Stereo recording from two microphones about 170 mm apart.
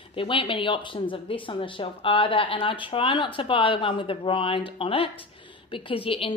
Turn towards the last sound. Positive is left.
turn(degrees=30)  # may be behind; listen again after turning